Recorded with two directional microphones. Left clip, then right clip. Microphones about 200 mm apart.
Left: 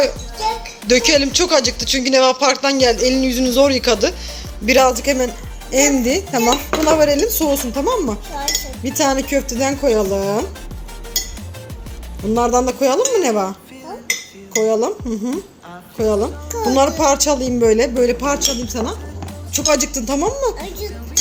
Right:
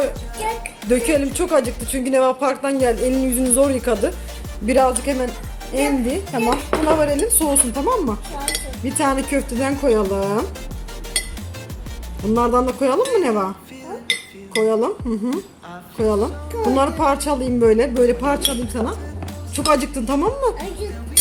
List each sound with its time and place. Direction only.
0.9 s speech: centre (ahead or behind)
5.7 s a man's voice: 20° left (ahead or behind); by 10.4 s 5° left (ahead or behind)
12.3 s speech: 5° left (ahead or behind)
14.5 s a man's voice: centre (ahead or behind)